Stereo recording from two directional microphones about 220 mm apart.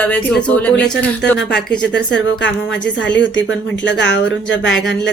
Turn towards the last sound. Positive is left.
turn(degrees=55)  # may be behind; listen again after turning